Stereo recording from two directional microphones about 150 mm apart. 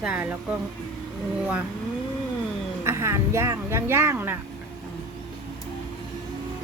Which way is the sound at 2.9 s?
20° right (ahead or behind).